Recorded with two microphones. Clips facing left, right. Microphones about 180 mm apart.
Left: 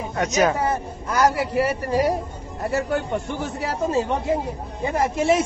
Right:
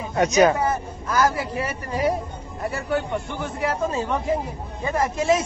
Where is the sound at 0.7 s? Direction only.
25° left (ahead or behind).